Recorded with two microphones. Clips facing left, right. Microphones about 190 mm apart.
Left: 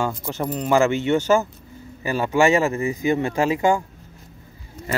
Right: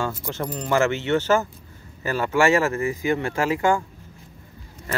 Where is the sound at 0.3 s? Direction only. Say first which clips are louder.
Left 4 dB; 10° left (ahead or behind).